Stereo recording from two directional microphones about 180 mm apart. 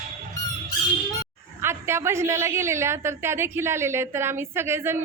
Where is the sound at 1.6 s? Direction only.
15° right (ahead or behind).